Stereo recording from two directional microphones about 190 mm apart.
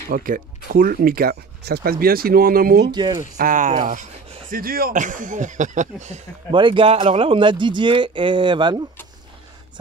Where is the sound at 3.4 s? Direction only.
45° right (ahead or behind).